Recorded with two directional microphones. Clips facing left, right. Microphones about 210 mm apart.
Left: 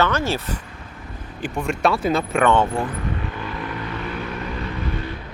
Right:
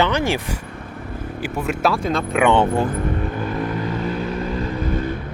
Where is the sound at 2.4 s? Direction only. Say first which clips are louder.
Right 3 dB; 15° right (ahead or behind).